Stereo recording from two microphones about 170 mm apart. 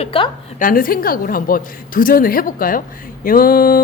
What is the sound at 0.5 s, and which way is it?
A woman's voice, 55° left (ahead or behind).